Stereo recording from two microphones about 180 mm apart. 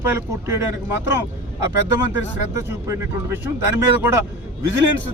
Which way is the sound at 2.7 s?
15° right (ahead or behind).